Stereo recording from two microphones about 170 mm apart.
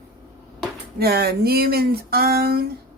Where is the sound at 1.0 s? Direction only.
70° right (ahead or behind).